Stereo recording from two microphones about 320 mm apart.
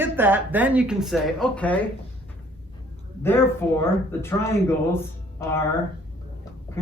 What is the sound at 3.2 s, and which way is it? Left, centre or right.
Speech, centre.